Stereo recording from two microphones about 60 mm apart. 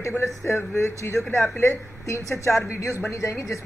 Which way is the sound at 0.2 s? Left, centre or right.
Left.